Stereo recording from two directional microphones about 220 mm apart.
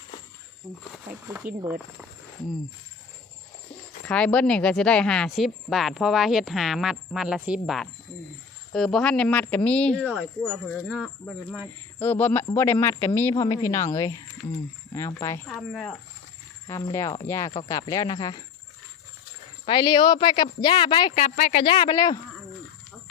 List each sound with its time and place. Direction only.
0.7 s speech: 15° right (ahead or behind)
4.0 s a woman's voice: 5° left (ahead or behind)
10.1 s a woman's voice: 5° right (ahead or behind)
11.9 s a woman's voice: 10° left (ahead or behind)
14.4 s speech: 30° left (ahead or behind)
15.2 s a woman's voice: 10° left (ahead or behind)
16.6 s a woman's voice: 15° left (ahead or behind)
19.6 s speech: 20° left (ahead or behind)